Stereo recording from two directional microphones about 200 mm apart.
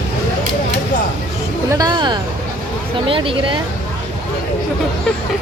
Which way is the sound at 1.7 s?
20° right (ahead or behind).